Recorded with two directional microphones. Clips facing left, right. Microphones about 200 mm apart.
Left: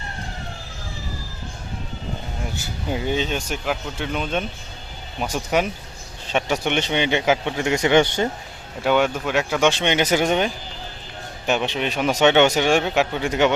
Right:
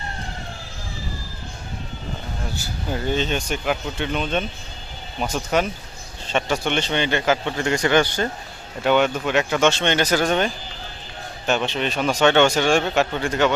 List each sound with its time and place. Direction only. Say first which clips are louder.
2.5 s a man's voice: left 1 dB; 15° left (ahead or behind)
8.8 s speech: right 1 dB; 5° left (ahead or behind)
9.6 s a man's voice: left 2 dB; 15° left (ahead or behind)
11.4 s a man's voice: even; 15° left (ahead or behind)